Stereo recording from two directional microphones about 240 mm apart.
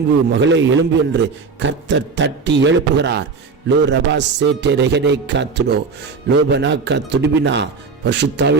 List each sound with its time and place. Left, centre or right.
0.3 s a man's voice: right